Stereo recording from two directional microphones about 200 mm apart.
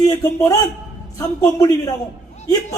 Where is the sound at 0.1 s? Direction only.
15° left (ahead or behind).